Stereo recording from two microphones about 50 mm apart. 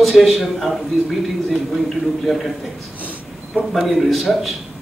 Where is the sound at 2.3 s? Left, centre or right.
Centre.